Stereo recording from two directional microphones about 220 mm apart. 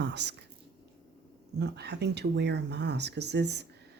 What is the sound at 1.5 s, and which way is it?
Speech, 50° right (ahead or behind).